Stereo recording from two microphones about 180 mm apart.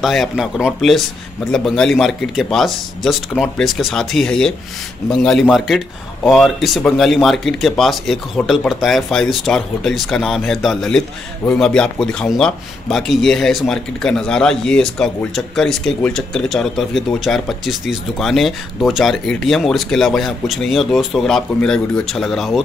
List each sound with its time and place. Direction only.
0.0 s a man's voice: centre (ahead or behind)